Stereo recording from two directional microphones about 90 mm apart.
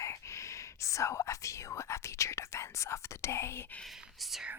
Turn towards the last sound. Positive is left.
turn(degrees=0)  # may be behind; listen again after turning